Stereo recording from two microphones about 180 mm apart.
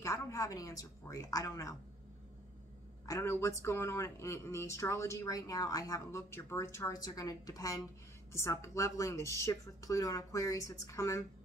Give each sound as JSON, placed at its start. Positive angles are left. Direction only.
{"t": 0.0, "sound": "a woman's voice", "side_deg": 15}
{"t": 3.1, "sound": "speech", "side_deg": 15}